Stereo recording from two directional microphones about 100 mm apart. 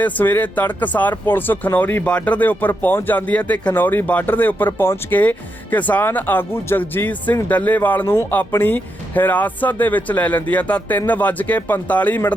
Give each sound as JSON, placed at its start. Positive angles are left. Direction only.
{"t": 0.0, "sound": "speech", "side_deg": 20}